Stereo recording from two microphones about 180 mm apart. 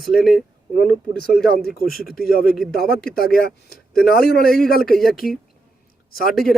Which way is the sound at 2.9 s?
55° left (ahead or behind).